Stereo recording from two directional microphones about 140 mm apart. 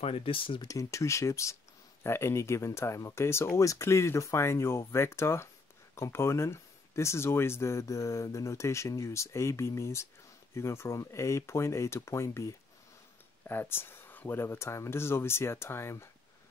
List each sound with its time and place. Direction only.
0.0 s speech: 40° left (ahead or behind)
0.7 s speech: 20° left (ahead or behind)